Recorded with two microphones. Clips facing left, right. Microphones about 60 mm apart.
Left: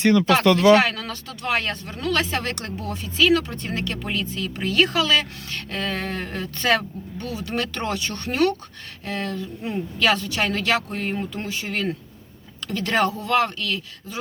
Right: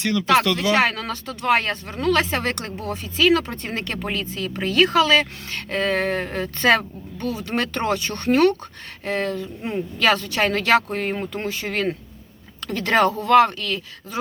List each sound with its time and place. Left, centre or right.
0.0 s speech: left
0.7 s speech: right